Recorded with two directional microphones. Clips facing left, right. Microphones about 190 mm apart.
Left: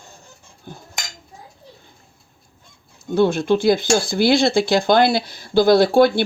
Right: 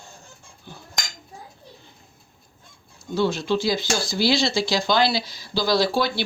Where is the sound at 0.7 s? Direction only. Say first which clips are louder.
Left 5 dB; 50° left (ahead or behind).